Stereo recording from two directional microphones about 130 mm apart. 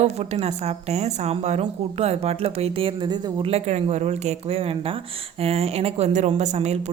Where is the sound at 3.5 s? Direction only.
60° right (ahead or behind).